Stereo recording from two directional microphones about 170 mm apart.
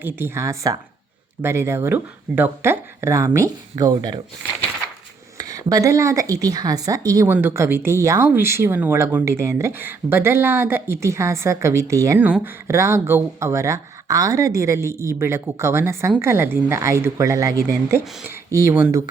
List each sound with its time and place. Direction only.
0.0 s speech: 15° right (ahead or behind)
5.4 s speech: 20° right (ahead or behind)